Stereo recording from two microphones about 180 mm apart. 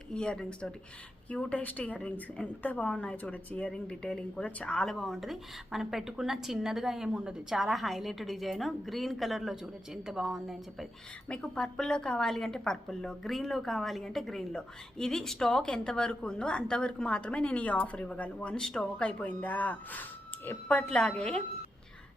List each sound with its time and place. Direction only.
0.1 s a woman's voice: 5° left (ahead or behind)